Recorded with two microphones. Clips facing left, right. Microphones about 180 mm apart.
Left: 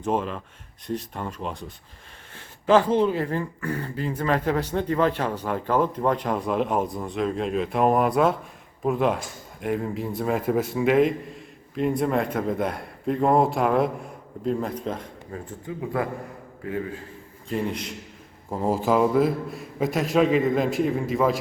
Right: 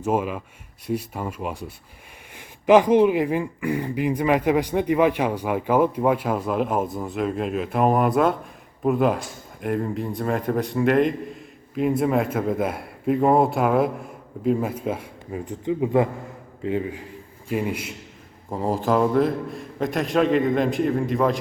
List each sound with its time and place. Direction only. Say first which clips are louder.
0.0 s speech: right 2 dB; 10° right (ahead or behind)
17.5 s speech: right 2 dB; 10° right (ahead or behind)
18.5 s speech: even; 5° left (ahead or behind)